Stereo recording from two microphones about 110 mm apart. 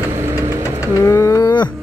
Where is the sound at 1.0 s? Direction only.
25° left (ahead or behind).